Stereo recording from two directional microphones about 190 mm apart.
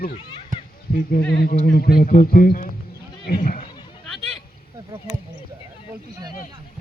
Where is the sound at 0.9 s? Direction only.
50° left (ahead or behind).